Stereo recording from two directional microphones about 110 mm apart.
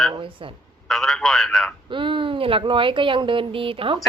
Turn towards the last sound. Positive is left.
turn(degrees=-55)  # may be behind; listen again after turning